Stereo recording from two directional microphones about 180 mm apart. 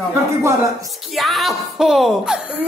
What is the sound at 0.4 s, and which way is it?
Speech, 15° right (ahead or behind).